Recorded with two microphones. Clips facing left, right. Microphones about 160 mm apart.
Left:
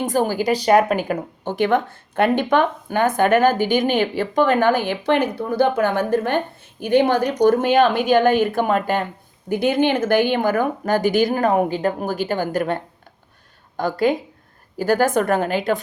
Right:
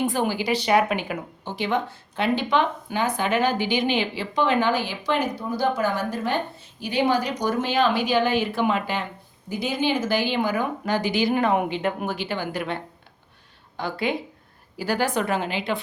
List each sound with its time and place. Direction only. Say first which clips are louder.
0.0 s speech: left 4 dB; 45° left (ahead or behind)